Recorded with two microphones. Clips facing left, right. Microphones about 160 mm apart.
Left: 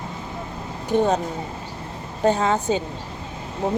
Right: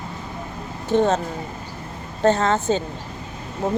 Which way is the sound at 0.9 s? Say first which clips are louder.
Right 1 dB; 10° left (ahead or behind).